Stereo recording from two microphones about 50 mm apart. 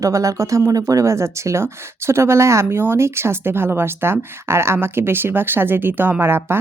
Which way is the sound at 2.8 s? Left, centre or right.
Right.